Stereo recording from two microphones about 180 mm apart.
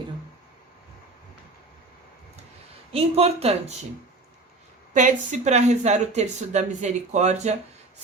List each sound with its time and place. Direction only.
2.9 s speech: 35° right (ahead or behind)
4.9 s speech: 40° right (ahead or behind)